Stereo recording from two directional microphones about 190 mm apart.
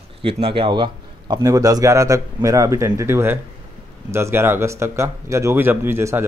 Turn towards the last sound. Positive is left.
turn(degrees=-10)  # may be behind; listen again after turning